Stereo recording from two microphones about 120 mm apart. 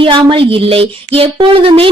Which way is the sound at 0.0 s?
45° right (ahead or behind).